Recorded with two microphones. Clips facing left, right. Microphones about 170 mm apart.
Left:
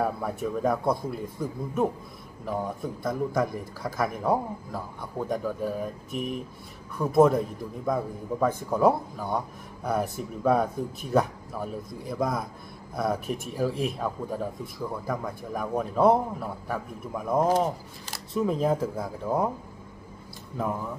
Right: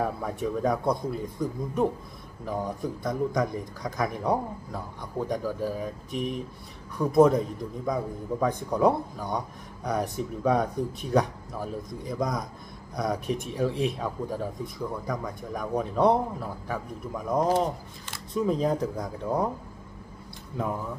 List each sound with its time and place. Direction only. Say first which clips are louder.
0.0 s speech: left 1 dB; 5° left (ahead or behind)